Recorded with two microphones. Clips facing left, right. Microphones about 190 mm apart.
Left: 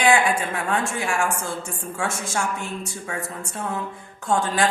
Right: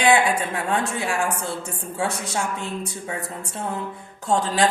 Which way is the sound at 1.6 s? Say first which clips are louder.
Right 2 dB; 20° right (ahead or behind).